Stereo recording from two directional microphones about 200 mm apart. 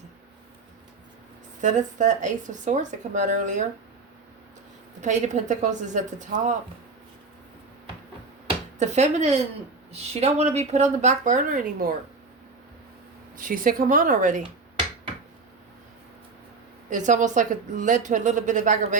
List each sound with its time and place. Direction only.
1.6 s speech: 40° right (ahead or behind)
4.9 s speech: 35° right (ahead or behind)
8.8 s speech: 35° right (ahead or behind)
13.3 s speech: 45° right (ahead or behind)
16.9 s speech: 40° right (ahead or behind)